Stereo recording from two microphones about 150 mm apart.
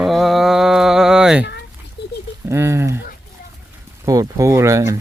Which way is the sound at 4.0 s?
20° right (ahead or behind).